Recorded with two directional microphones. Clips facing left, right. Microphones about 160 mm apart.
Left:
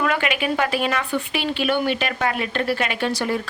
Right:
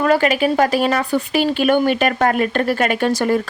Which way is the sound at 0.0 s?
40° right (ahead or behind).